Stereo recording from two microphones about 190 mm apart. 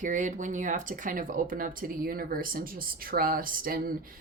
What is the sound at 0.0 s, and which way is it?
A woman's voice, 40° right (ahead or behind).